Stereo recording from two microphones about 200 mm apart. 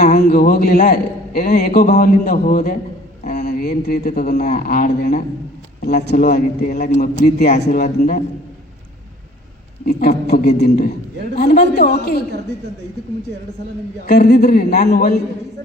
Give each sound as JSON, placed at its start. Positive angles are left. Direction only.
{"t": 0.0, "sound": "a man's voice", "side_deg": 50}
{"t": 10.0, "sound": "a man's voice", "side_deg": 50}
{"t": 14.1, "sound": "a man's voice", "side_deg": 50}